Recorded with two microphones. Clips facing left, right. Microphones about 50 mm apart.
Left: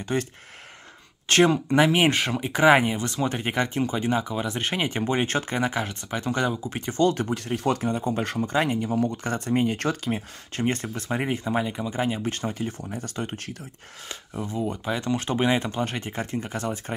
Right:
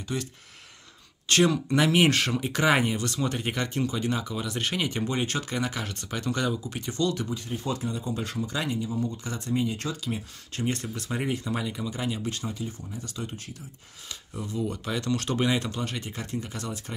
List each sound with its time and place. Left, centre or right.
0.0 s speech: left
1.3 s speech: left
7.3 s speech: left
8.9 s speech: left
14.3 s speech: left